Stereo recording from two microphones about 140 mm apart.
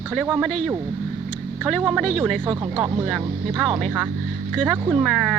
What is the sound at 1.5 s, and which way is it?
Speech, 5° right (ahead or behind).